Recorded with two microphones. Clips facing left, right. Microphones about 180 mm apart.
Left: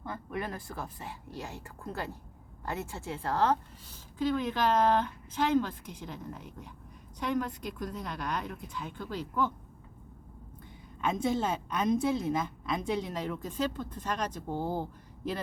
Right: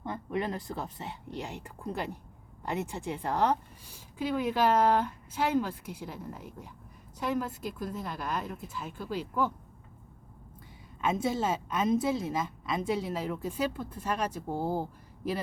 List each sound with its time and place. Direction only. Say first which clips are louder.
0.0 s a woman's voice: right 4 dB; 20° right (ahead or behind)
11.0 s a woman's voice: even; 5° right (ahead or behind)